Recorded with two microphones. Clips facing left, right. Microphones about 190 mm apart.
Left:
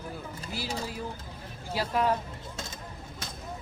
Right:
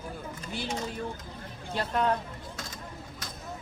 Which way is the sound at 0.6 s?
30° left (ahead or behind).